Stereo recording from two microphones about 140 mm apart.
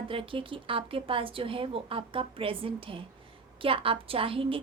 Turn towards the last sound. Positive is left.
turn(degrees=-40)  # may be behind; listen again after turning